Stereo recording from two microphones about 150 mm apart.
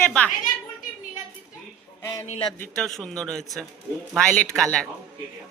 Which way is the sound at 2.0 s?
25° left (ahead or behind).